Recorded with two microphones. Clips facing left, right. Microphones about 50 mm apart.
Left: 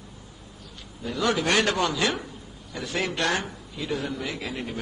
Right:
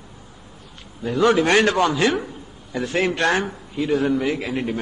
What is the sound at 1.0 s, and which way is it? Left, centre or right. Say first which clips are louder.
A man's voice: right 8 dB; right.